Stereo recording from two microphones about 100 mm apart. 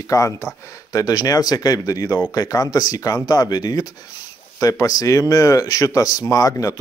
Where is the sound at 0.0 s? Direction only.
35° left (ahead or behind).